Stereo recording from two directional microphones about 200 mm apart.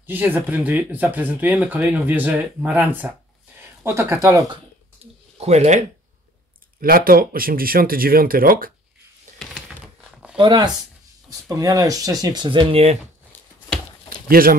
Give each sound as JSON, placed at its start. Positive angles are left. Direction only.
{"t": 0.0, "sound": "speech", "side_deg": -10}
{"t": 5.0, "sound": "a sound", "side_deg": -30}
{"t": 5.4, "sound": "speech", "side_deg": -35}
{"t": 6.8, "sound": "speech", "side_deg": -45}
{"t": 9.4, "sound": "a sound", "side_deg": -5}
{"t": 10.3, "sound": "speech", "side_deg": -25}
{"t": 14.4, "sound": "speech", "side_deg": -45}